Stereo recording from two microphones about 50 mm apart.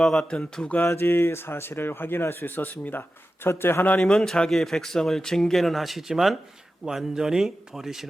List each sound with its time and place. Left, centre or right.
0.0 s speech: centre
0.8 s speech: left
2.5 s speech: left
4.0 s speech: centre